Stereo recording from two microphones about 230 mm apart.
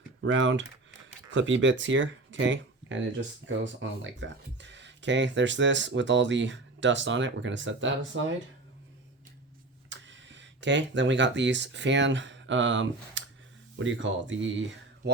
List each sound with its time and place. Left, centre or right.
0.2 s speech: right
9.9 s speech: right